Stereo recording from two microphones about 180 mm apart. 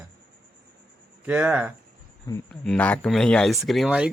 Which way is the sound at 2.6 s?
5° left (ahead or behind).